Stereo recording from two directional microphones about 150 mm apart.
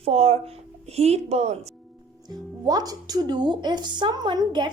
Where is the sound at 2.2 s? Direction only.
25° right (ahead or behind).